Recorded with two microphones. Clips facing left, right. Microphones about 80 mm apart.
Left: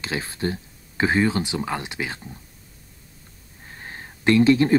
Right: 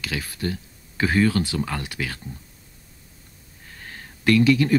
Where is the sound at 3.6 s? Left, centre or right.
Left.